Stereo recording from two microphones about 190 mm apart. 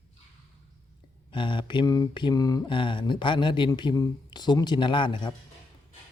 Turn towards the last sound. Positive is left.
turn(degrees=25)  # may be behind; listen again after turning